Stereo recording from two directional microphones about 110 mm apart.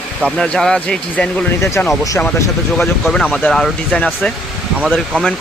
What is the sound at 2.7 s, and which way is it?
Speech, 5° left (ahead or behind).